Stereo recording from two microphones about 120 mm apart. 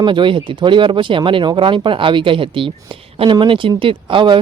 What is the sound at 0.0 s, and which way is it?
Speech, 40° right (ahead or behind).